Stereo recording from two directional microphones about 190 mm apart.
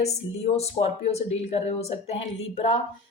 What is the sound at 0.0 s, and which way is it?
A woman's voice, 35° left (ahead or behind).